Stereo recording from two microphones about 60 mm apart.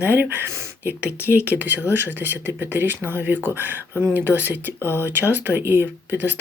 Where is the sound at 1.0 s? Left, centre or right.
Right.